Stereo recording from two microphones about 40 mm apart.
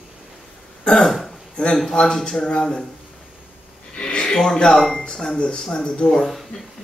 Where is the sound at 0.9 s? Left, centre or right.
Centre.